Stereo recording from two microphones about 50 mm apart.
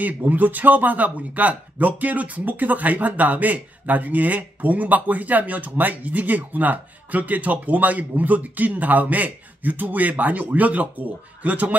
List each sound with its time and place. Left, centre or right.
0.0 s speech: right